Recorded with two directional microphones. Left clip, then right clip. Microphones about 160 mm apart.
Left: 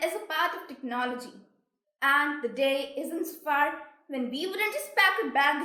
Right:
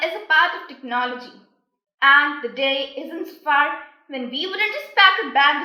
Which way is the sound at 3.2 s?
45° left (ahead or behind).